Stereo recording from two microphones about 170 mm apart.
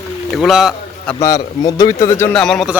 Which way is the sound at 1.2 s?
20° left (ahead or behind).